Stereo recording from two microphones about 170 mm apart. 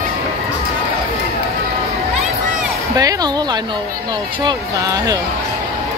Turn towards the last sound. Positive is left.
turn(degrees=-20)  # may be behind; listen again after turning